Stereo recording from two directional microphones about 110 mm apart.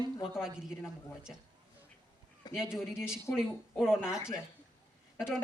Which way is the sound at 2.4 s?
35° left (ahead or behind).